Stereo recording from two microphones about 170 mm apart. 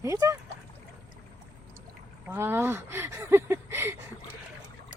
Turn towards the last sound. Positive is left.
turn(degrees=-15)  # may be behind; listen again after turning